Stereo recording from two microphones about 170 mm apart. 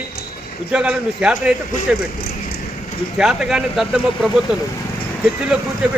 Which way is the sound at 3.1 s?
Centre (ahead or behind).